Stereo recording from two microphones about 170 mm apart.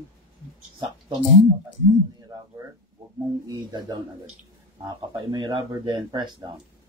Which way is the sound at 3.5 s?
25° right (ahead or behind).